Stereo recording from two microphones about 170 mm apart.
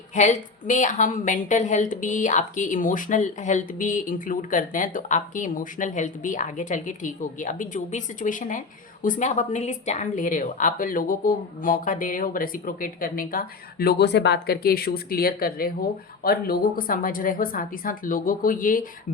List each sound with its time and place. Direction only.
0.1 s a woman's voice: 45° left (ahead or behind)